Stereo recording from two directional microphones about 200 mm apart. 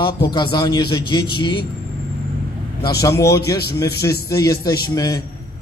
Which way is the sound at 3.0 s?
15° left (ahead or behind).